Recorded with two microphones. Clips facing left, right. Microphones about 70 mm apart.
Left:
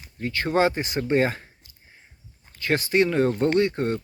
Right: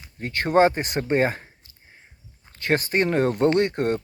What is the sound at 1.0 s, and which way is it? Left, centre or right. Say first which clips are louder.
Speech: even; right.